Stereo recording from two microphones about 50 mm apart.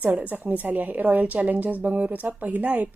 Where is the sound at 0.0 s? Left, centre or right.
Right.